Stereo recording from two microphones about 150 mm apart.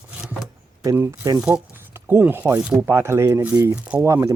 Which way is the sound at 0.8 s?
20° right (ahead or behind).